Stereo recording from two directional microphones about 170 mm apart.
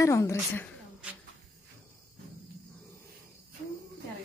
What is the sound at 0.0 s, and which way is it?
Speech, 15° left (ahead or behind).